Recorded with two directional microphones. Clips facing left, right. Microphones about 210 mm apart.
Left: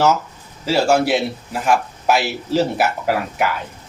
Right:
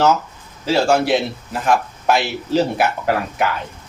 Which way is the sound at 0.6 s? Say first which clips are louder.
Even; 5° left (ahead or behind).